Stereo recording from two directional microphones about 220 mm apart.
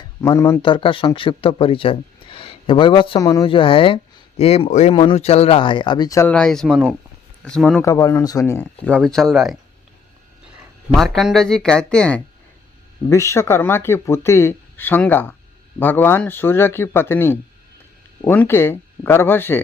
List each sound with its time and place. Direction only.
0.0 s speech: 15° left (ahead or behind)
7.9 s speech: 15° left (ahead or behind)
10.9 s speech: centre (ahead or behind)